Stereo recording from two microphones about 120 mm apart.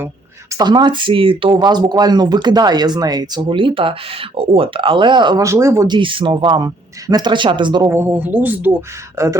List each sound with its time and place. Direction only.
0.5 s speech: 35° right (ahead or behind)
5.4 s speech: 25° right (ahead or behind)
5.9 s speech: 45° right (ahead or behind)
7.9 s speech: 20° right (ahead or behind)
9.2 s speech: 25° right (ahead or behind)